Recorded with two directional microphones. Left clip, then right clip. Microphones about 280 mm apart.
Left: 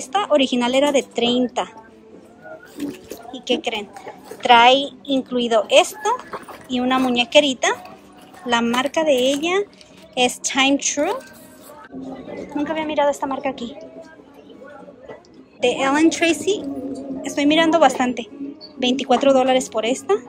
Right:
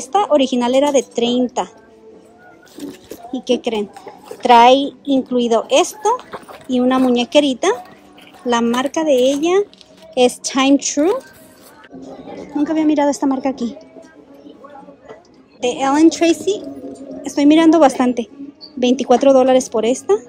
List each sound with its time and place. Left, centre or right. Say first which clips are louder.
0.0 s a woman's voice: right 4 dB; centre
3.3 s a woman's voice: right 4 dB; centre
12.5 s a woman's voice: right 5 dB; centre
15.6 s a woman's voice: right 3 dB; centre